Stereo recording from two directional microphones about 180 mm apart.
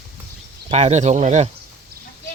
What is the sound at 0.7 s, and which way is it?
Speech, 40° right (ahead or behind).